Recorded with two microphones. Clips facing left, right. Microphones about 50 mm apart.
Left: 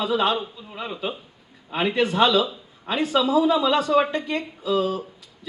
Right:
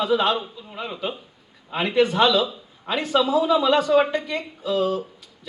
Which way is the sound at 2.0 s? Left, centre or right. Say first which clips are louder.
Right 2 dB; right.